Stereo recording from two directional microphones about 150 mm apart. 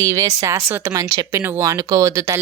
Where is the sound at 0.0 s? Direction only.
20° right (ahead or behind).